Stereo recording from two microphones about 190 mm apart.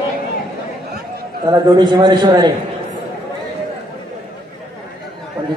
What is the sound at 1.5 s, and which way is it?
A man's voice, 20° right (ahead or behind).